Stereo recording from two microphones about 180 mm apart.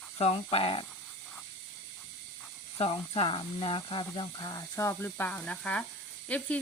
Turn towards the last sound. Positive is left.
turn(degrees=5)  # may be behind; listen again after turning